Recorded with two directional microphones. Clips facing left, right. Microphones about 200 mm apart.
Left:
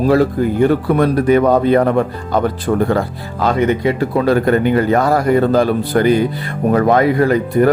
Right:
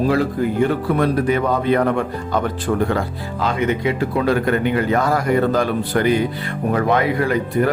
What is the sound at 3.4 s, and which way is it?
Speech, 40° left (ahead or behind).